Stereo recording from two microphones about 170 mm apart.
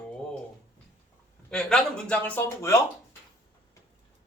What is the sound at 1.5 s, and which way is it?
A man's voice, 5° left (ahead or behind).